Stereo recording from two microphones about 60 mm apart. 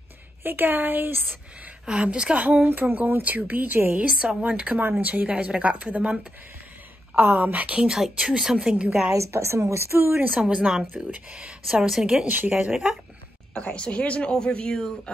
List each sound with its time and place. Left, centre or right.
0.4 s speech: right
1.9 s speech: centre
2.6 s speech: right
7.2 s speech: right
7.9 s speech: centre
9.1 s speech: right
10.4 s speech: centre
12.3 s speech: right
13.6 s speech: centre